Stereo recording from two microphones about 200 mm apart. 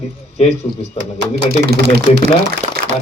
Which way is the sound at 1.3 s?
55° right (ahead or behind).